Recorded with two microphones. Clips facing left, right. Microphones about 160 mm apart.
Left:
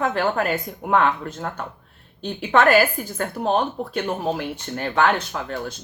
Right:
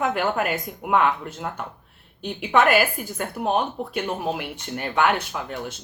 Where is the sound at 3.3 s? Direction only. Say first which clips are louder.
Left 2 dB; 35° left (ahead or behind).